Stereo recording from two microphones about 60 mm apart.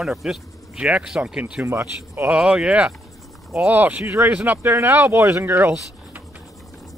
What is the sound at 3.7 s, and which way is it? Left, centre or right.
Speech, right.